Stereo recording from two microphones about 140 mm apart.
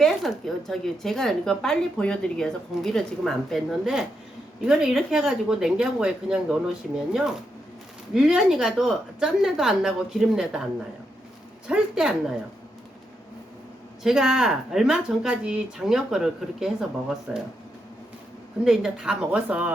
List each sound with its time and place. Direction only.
0.0 s a woman's voice: centre (ahead or behind)
11.7 s a woman's voice: 5° right (ahead or behind)
14.0 s a woman's voice: 5° right (ahead or behind)
18.6 s a woman's voice: 5° right (ahead or behind)